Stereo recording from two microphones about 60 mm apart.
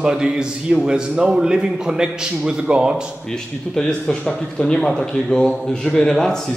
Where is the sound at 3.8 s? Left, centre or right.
Centre.